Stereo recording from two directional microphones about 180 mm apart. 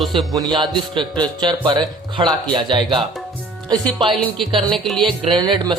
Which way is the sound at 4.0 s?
Centre (ahead or behind).